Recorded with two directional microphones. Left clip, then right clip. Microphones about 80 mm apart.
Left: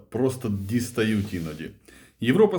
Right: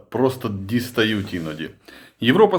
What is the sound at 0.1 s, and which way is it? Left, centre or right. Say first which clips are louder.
Speech: right 5 dB; right.